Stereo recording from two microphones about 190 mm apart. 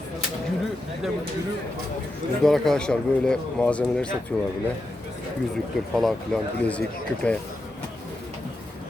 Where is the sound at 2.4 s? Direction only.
Centre (ahead or behind).